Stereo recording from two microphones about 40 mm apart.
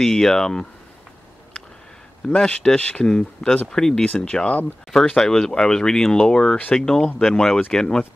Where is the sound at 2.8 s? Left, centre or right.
Left.